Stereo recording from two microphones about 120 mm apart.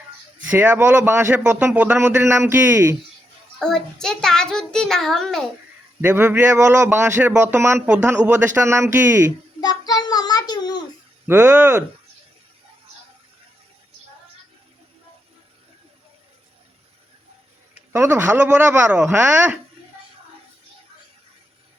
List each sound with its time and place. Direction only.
0.5 s a man's voice: 15° right (ahead or behind)
3.6 s a child's voice: 5° left (ahead or behind)
6.0 s a man's voice: 15° right (ahead or behind)
8.5 s speech: 20° right (ahead or behind)
9.6 s child singing: 35° left (ahead or behind)
11.3 s speech: 20° right (ahead or behind)
17.7 s a man's voice: 15° right (ahead or behind)